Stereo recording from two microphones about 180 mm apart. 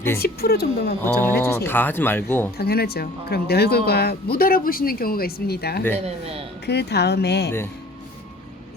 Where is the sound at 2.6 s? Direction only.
60° left (ahead or behind).